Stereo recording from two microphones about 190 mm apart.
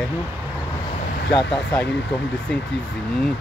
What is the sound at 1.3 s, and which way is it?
Speech, 5° left (ahead or behind).